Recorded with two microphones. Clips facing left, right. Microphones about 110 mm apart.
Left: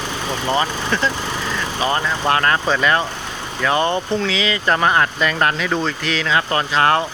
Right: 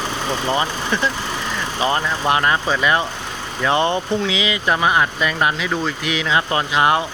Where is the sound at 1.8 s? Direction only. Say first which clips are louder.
Even; 20° right (ahead or behind).